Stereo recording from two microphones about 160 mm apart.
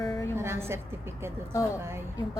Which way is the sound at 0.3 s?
15° right (ahead or behind).